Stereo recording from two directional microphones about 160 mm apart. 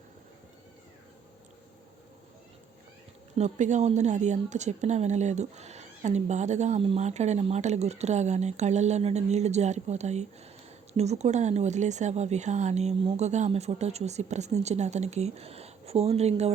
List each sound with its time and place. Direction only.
3.3 s a woman's voice: 45° right (ahead or behind)